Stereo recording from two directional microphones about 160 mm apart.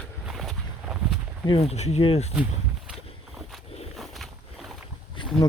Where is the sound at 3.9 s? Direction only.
Centre (ahead or behind).